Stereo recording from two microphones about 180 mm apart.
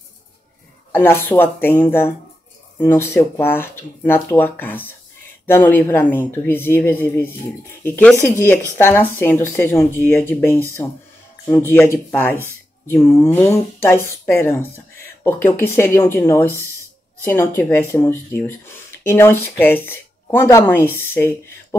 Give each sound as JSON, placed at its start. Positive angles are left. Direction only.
{"t": 0.9, "sound": "speech", "side_deg": 10}